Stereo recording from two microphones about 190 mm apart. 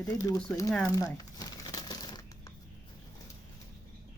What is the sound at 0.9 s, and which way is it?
Crumpling, 20° left (ahead or behind).